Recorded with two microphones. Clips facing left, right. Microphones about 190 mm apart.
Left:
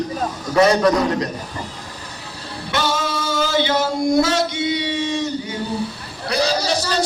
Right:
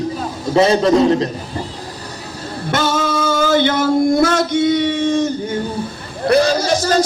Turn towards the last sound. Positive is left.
turn(degrees=-50)  # may be behind; listen again after turning